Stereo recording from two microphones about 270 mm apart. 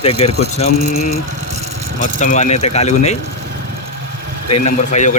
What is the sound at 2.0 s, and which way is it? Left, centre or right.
Speech, left.